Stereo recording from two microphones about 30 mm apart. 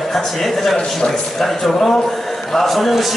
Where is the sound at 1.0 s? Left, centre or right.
Left.